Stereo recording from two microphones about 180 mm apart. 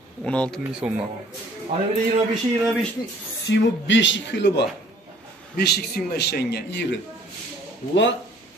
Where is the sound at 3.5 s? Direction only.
90° left; by 4.6 s 75° left (ahead or behind).